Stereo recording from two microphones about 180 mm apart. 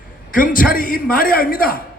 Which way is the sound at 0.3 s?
50° left (ahead or behind).